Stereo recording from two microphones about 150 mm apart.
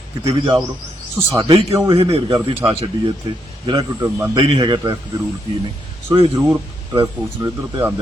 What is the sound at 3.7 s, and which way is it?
Speech, 25° right (ahead or behind).